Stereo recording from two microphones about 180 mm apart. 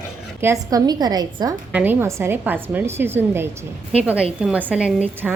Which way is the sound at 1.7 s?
10° right (ahead or behind).